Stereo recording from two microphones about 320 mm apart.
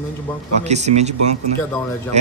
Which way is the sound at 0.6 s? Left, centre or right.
Right.